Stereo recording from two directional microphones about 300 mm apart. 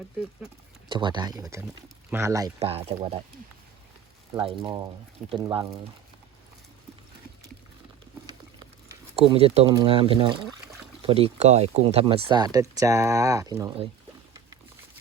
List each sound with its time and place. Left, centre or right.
0.9 s speech: centre
4.4 s speech: centre
9.1 s speech: centre